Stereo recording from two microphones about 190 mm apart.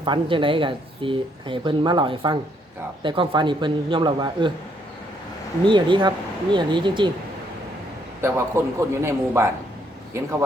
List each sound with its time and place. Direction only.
0.0 s speech: 25° right (ahead or behind)
5.6 s speech: 25° right (ahead or behind)
8.2 s a man's voice: 15° right (ahead or behind)